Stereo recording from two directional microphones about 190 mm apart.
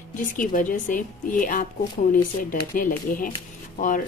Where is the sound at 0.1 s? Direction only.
45° left (ahead or behind).